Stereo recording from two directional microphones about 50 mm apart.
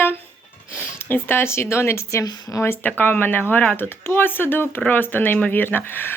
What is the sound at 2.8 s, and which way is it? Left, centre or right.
Speech, left.